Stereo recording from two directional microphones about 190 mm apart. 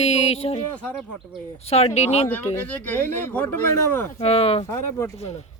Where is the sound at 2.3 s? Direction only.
10° left (ahead or behind).